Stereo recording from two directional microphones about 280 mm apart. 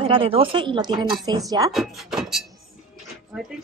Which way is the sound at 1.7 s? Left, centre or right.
Centre.